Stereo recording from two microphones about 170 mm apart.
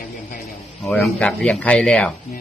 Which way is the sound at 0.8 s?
5° left (ahead or behind).